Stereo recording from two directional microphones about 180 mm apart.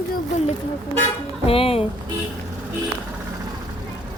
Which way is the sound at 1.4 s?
30° left (ahead or behind).